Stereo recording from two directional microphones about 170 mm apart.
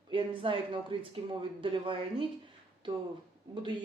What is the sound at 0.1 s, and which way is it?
Speech, 30° right (ahead or behind).